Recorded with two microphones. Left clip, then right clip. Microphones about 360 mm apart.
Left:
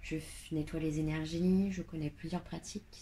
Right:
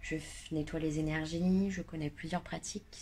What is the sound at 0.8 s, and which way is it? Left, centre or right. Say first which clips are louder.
Speech: right 1 dB; right.